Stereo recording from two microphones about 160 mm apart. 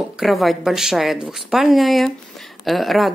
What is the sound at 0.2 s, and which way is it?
A woman's voice, centre (ahead or behind).